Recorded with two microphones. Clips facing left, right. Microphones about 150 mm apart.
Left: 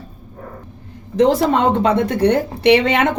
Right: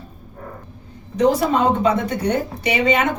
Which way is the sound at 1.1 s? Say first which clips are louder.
Left 3 dB; 65° left (ahead or behind).